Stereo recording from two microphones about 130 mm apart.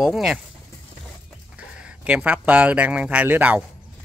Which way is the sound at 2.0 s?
10° right (ahead or behind).